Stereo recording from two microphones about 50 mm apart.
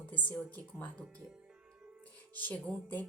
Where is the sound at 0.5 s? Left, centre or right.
Left.